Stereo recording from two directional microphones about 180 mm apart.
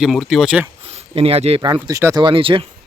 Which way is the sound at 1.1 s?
35° right (ahead or behind).